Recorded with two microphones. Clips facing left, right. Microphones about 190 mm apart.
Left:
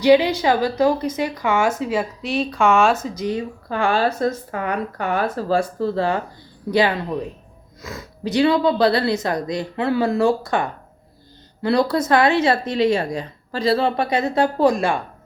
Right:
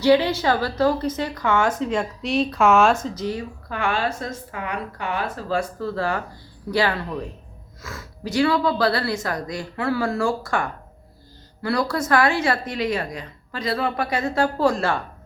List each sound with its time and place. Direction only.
0.0 s a woman's voice: 15° left (ahead or behind)
3.7 s speech: 30° left (ahead or behind); by 15.0 s 15° left (ahead or behind)